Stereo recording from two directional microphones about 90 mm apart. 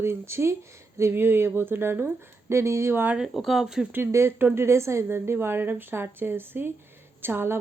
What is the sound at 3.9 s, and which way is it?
A woman's voice, 25° right (ahead or behind).